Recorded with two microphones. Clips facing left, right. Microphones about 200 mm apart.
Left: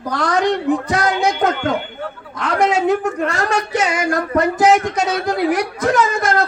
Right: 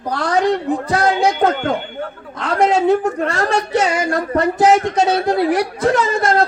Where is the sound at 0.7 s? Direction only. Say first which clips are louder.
Right 1 dB; 30° right (ahead or behind).